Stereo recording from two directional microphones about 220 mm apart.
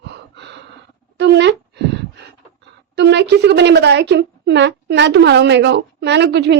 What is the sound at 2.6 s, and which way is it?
A woman's voice, 50° right (ahead or behind).